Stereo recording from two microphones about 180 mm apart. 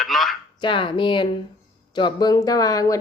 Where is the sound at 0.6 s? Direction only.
25° left (ahead or behind).